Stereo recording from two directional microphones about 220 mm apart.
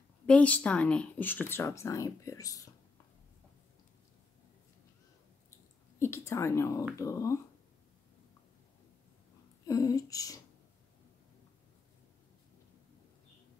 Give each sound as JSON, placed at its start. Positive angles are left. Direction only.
{"t": 0.3, "sound": "a woman's voice", "side_deg": 5}
{"t": 5.9, "sound": "speech", "side_deg": 10}
{"t": 9.7, "sound": "speech", "side_deg": 15}